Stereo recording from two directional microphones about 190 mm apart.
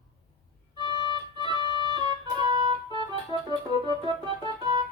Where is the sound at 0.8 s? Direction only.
20° right (ahead or behind).